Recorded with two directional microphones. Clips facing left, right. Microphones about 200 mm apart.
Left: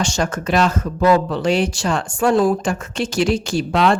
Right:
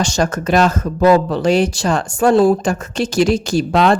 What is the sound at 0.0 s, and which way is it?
Speech, 40° right (ahead or behind).